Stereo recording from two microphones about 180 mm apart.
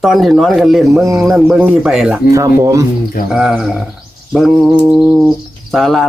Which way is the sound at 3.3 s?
Centre (ahead or behind).